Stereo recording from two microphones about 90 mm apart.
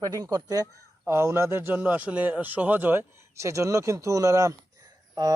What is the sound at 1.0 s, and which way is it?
A man's voice, 30° right (ahead or behind).